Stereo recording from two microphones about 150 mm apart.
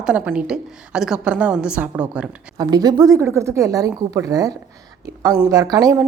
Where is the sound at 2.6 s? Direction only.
25° right (ahead or behind).